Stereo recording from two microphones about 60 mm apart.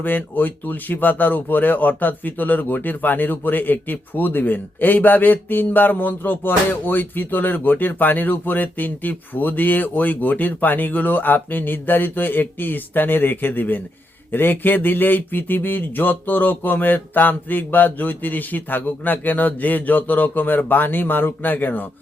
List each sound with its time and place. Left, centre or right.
0.0 s speech: left